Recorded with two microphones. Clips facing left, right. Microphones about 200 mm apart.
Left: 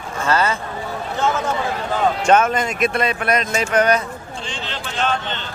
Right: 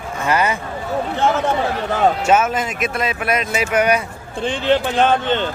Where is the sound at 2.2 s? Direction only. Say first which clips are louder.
Left 1 dB; 5° right (ahead or behind).